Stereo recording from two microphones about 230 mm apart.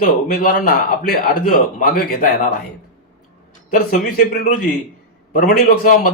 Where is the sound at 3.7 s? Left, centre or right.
Left.